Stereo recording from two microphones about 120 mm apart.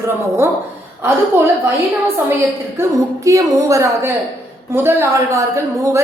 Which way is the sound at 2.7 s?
25° right (ahead or behind).